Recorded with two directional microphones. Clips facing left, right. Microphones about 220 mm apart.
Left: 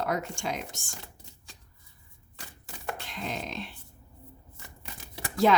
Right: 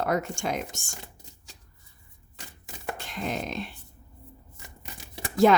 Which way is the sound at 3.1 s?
50° right (ahead or behind).